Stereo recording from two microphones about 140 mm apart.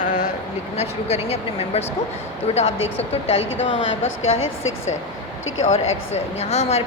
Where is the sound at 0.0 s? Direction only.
65° left (ahead or behind).